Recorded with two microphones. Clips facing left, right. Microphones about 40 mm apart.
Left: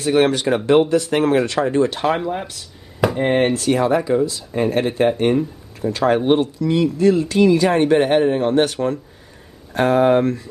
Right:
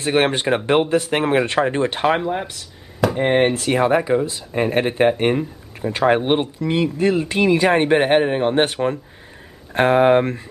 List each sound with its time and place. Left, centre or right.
0.0 s speech: right
3.8 s speech: right
9.8 s speech: right